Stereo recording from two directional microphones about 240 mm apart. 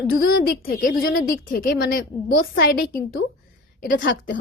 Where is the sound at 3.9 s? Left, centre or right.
Left.